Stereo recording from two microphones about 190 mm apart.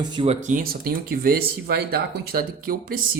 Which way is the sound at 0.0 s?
25° right (ahead or behind).